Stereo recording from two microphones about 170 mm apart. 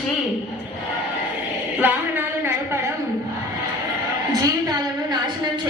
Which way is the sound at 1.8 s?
10° right (ahead or behind).